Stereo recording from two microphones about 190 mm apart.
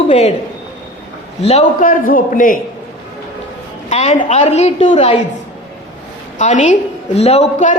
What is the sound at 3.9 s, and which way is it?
A woman's voice, 35° left (ahead or behind).